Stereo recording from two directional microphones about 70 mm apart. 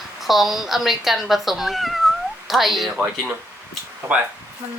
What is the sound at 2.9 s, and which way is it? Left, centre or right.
A child's voice, right.